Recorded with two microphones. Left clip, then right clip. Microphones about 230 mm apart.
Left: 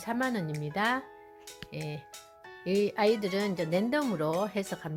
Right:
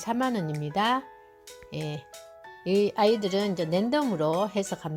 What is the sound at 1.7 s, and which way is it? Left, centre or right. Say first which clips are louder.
Speech: right 5 dB; centre.